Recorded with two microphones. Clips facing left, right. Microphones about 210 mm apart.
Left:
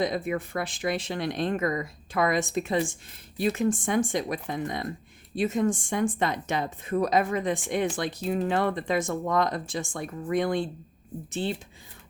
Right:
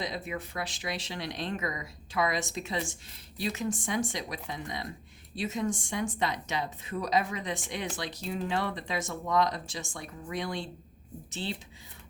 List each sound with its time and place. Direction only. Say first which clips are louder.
0.0 s speech: left 8 dB; 50° left (ahead or behind)